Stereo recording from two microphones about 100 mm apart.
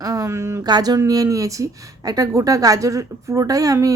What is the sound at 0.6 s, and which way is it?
A woman's voice, 40° right (ahead or behind).